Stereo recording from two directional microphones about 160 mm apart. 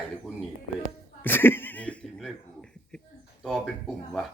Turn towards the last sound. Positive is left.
turn(degrees=0)  # may be behind; listen again after turning